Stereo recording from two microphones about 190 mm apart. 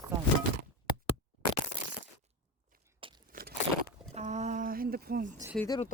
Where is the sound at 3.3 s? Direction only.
50° right (ahead or behind).